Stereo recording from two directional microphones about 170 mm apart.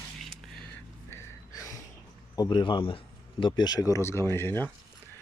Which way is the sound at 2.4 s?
30° left (ahead or behind).